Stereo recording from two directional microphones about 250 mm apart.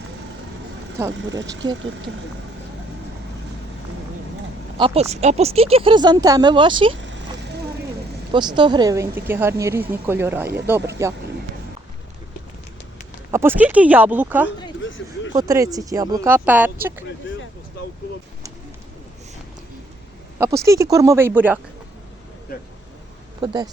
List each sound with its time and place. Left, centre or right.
1.0 s speech: centre
1.4 s speech: right
4.8 s speech: right
7.0 s a sound: right
8.3 s speech: centre
13.3 s speech: centre
14.8 s a sound: left
15.3 s speech: centre
20.7 s speech: centre
23.4 s speech: centre